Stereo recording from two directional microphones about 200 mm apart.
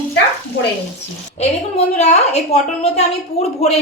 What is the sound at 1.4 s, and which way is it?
A woman's voice, 35° left (ahead or behind).